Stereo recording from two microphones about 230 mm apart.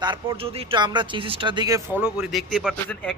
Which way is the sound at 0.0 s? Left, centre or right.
Centre.